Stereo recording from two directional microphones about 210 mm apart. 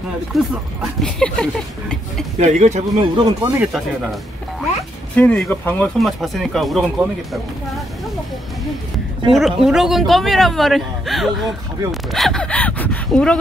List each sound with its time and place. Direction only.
0.3 s speech: centre (ahead or behind)
2.3 s speech: 35° right (ahead or behind)
3.2 s speech: 20° right (ahead or behind)
3.5 s speech: centre (ahead or behind)
9.3 s speech: centre (ahead or behind)